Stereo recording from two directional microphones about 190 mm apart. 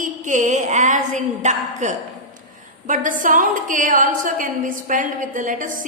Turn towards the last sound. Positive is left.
turn(degrees=-45)  # may be behind; listen again after turning